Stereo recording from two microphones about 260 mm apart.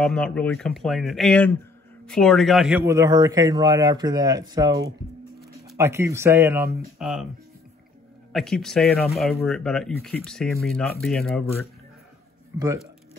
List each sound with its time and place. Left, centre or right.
0.0 s a man's voice: centre
8.3 s speech: centre